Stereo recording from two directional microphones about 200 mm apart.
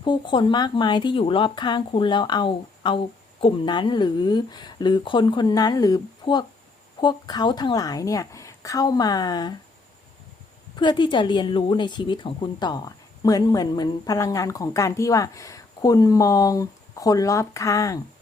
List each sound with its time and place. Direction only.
0.0 s speech: 25° left (ahead or behind)
10.8 s speech: 25° left (ahead or behind)